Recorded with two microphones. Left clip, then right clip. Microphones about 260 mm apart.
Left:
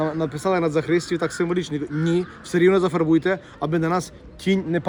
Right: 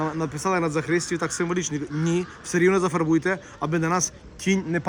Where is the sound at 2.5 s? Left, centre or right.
Centre.